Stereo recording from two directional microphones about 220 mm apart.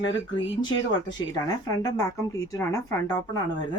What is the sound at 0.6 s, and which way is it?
Speech, 20° left (ahead or behind).